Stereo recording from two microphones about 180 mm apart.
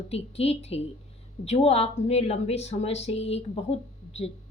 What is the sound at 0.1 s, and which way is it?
A woman's voice, 35° left (ahead or behind).